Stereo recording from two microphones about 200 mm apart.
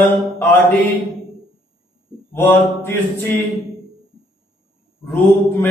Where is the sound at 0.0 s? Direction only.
10° left (ahead or behind).